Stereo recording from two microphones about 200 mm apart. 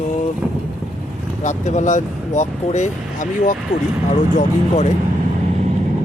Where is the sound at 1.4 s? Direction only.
35° left (ahead or behind).